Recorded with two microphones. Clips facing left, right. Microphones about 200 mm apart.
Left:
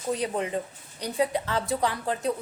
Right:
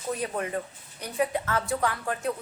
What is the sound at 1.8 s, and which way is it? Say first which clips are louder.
Music: left 1 dB; 25° left (ahead or behind).